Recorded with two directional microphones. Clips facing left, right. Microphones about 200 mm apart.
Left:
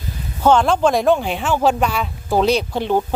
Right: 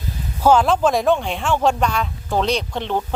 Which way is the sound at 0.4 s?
5° right (ahead or behind).